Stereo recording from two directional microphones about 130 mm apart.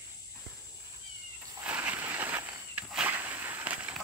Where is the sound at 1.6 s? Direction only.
10° right (ahead or behind).